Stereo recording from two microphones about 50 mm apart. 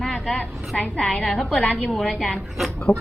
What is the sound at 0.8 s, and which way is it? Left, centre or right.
Speech, centre.